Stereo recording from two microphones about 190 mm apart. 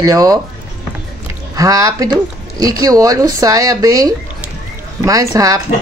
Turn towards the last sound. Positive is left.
turn(degrees=-20)  # may be behind; listen again after turning